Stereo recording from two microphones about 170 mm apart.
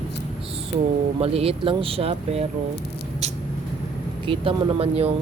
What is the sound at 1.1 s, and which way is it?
Speech, 35° right (ahead or behind).